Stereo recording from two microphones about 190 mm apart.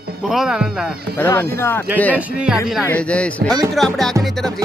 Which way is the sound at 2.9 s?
5° left (ahead or behind).